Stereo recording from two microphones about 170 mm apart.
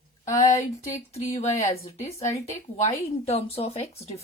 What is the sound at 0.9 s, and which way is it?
Speech, 45° left (ahead or behind).